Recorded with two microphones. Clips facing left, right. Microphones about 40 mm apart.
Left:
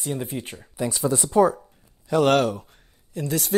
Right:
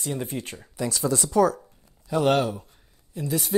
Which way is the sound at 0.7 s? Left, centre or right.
Centre.